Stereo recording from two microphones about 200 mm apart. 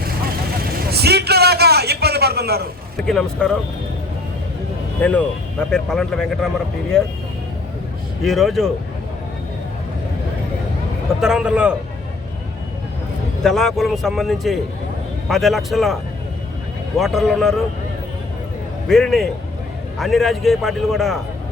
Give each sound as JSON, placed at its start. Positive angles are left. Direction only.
{"t": 0.8, "sound": "a sound", "side_deg": -50}
{"t": 3.1, "sound": "speech", "side_deg": 5}
{"t": 5.0, "sound": "speech", "side_deg": 5}
{"t": 8.2, "sound": "speech", "side_deg": 0}
{"t": 11.2, "sound": "speech", "side_deg": -5}
{"t": 13.4, "sound": "speech", "side_deg": 0}
{"t": 17.0, "sound": "speech", "side_deg": 0}
{"t": 18.9, "sound": "speech", "side_deg": 0}